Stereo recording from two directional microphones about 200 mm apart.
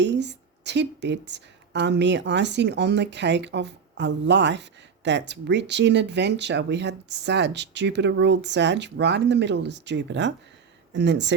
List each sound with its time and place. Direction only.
0.0 s speech: 60° right (ahead or behind)